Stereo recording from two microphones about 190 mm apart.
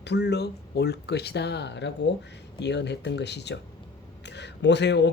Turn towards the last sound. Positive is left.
turn(degrees=65)  # may be behind; listen again after turning